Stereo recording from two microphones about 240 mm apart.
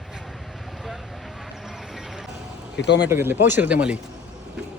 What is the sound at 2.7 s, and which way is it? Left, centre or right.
Speech, left.